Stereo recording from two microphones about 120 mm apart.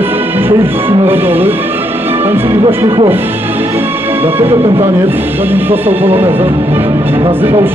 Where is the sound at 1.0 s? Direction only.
15° right (ahead or behind).